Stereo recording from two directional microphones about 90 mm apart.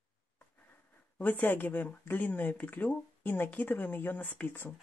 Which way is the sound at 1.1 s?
20° left (ahead or behind).